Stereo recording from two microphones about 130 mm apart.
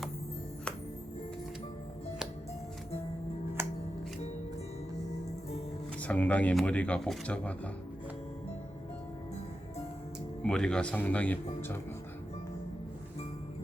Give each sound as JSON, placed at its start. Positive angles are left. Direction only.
{"t": 3.6, "sound": "music", "side_deg": -20}
{"t": 6.0, "sound": "speech", "side_deg": 10}
{"t": 10.4, "sound": "speech", "side_deg": 5}